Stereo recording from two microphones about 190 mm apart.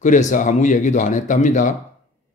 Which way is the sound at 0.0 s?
40° left (ahead or behind).